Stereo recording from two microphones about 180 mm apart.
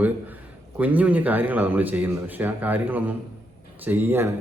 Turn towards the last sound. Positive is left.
turn(degrees=-10)  # may be behind; listen again after turning